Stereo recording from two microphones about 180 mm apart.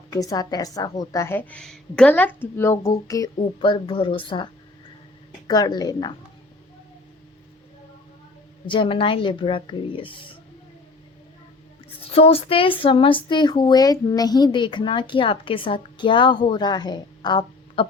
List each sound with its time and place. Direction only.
0.1 s a woman's voice: 20° left (ahead or behind)
3.3 s speech: 30° left (ahead or behind)
5.5 s speech: 20° left (ahead or behind)
8.6 s speech: 30° left (ahead or behind)
12.0 s speech: 30° left (ahead or behind)